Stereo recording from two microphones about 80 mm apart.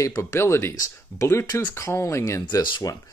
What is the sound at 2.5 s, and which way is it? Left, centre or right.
Speech, left.